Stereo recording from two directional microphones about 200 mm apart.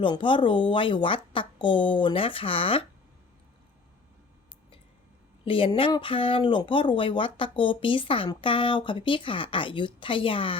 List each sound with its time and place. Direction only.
0.0 s speech: 25° left (ahead or behind)
5.5 s speech: 25° left (ahead or behind)